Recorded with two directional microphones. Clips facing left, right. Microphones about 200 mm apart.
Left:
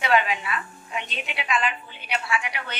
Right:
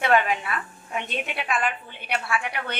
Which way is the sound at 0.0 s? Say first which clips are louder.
Right 1 dB; 50° right (ahead or behind).